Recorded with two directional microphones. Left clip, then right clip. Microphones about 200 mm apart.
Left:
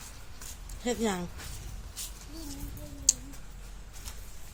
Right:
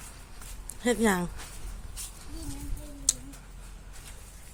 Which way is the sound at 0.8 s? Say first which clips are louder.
Right 5 dB; 30° right (ahead or behind).